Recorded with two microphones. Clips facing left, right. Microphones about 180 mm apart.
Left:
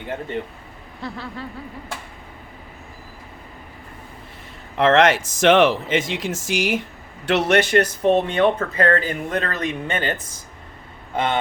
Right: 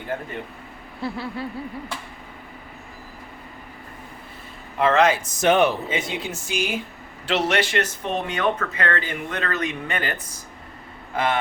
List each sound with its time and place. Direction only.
1.0 s a sound: 10° right (ahead or behind)
4.8 s speech: 85° left
7.3 s a man's voice: 60° left (ahead or behind)
7.6 s speech: 40° left (ahead or behind)